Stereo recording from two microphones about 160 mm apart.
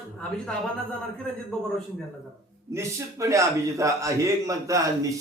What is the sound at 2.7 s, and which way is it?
A man's voice, 20° right (ahead or behind).